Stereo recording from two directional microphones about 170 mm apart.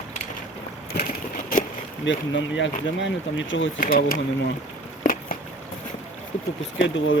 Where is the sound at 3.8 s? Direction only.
55° left (ahead or behind).